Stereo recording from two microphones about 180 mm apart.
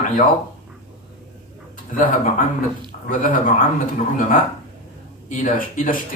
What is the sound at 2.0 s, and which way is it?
Speech, 50° left (ahead or behind).